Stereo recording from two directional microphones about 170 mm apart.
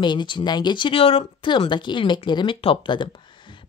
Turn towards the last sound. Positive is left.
turn(degrees=30)  # may be behind; listen again after turning